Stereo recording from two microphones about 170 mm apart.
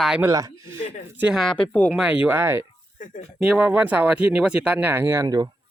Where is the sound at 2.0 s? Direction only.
5° right (ahead or behind).